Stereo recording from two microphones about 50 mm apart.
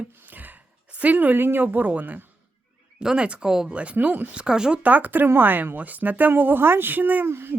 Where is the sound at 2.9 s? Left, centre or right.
Centre.